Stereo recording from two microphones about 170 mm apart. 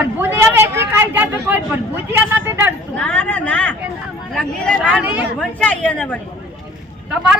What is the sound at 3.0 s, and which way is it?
A woman's voice, 10° left (ahead or behind).